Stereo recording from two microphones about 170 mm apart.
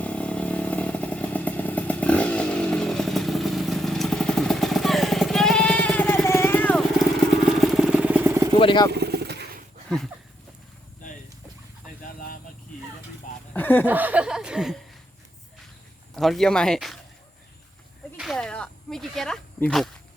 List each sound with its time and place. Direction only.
0.0 s motorcycle: 5° left (ahead or behind)
7.6 s vehicle: centre (ahead or behind)
8.5 s speech: 30° left (ahead or behind)
8.9 s vehicle: 75° right (ahead or behind)
13.5 s chuckle: 10° left (ahead or behind)
13.8 s speech: 10° right (ahead or behind)
16.1 s speech: centre (ahead or behind)
18.2 s snake: centre (ahead or behind)